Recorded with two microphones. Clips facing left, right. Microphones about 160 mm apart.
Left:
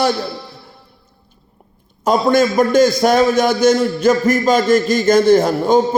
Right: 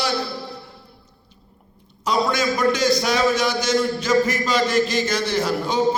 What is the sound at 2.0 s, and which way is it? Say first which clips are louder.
A man's voice: left 8 dB; 50° left (ahead or behind).